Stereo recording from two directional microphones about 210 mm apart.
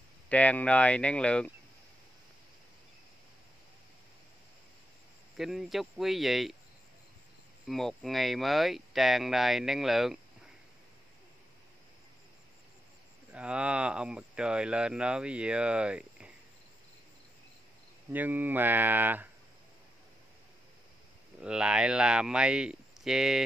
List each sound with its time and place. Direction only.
0.3 s speech: 5° left (ahead or behind)
5.4 s speech: centre (ahead or behind)
7.6 s speech: centre (ahead or behind)
13.3 s speech: 5° right (ahead or behind)
18.1 s speech: 10° right (ahead or behind)
21.4 s speech: 5° right (ahead or behind)